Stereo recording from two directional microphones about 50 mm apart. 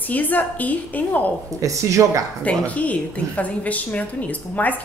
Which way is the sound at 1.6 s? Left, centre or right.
Right.